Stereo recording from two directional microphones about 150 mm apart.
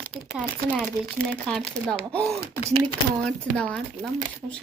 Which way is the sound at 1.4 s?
5° left (ahead or behind).